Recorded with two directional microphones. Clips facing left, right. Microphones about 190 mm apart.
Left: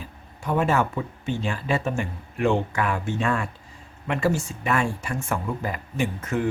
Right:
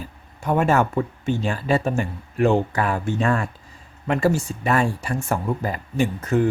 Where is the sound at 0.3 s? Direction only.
45° right (ahead or behind).